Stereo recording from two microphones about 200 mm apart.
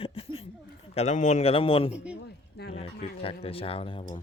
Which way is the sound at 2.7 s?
30° left (ahead or behind).